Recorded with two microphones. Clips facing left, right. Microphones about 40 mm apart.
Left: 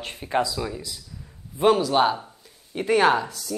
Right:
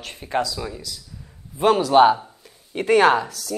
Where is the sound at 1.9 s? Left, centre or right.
Centre.